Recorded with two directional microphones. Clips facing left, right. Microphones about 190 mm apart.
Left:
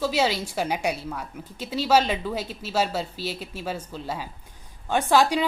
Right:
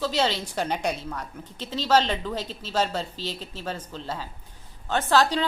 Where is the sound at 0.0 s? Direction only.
10° left (ahead or behind).